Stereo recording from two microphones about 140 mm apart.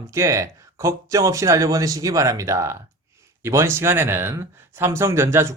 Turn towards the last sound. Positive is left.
turn(degrees=-20)  # may be behind; listen again after turning